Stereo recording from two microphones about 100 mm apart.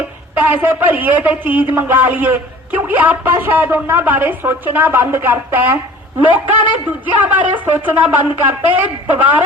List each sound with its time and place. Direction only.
0.3 s a man's voice: 20° right (ahead or behind)
7.0 s speech: 15° right (ahead or behind)